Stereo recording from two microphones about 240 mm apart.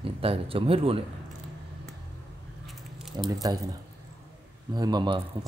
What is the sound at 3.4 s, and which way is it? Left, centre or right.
Speech, centre.